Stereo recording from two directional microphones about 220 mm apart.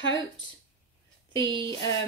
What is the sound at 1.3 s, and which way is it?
Speech, 20° right (ahead or behind).